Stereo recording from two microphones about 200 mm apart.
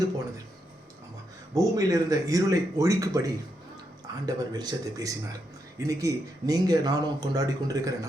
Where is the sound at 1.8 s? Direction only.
15° right (ahead or behind).